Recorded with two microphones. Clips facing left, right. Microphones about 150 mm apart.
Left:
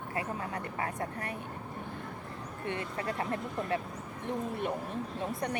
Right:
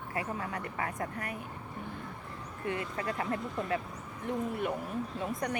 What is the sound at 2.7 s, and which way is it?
Speech, 30° left (ahead or behind).